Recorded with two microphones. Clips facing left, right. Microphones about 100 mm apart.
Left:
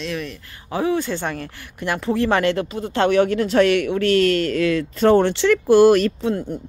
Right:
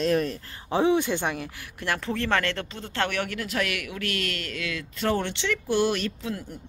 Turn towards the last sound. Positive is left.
turn(degrees=40)  # may be behind; listen again after turning